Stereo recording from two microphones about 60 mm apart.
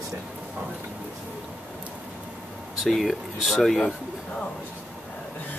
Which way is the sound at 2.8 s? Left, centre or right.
Centre.